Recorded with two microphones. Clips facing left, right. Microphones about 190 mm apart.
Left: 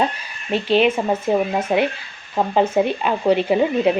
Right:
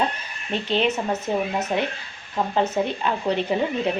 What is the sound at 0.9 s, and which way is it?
Speech, 30° left (ahead or behind).